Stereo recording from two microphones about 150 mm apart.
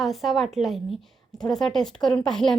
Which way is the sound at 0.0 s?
Centre (ahead or behind).